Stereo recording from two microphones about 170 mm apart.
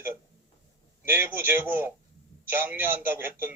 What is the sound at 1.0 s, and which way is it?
A man's voice, 15° right (ahead or behind).